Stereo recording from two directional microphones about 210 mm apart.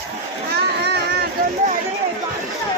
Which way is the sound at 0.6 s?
50° right (ahead or behind).